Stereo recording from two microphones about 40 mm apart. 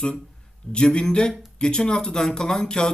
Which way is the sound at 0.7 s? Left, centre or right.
Left.